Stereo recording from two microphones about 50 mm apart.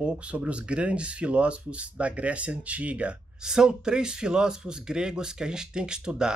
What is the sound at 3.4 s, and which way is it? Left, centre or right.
Speech, centre.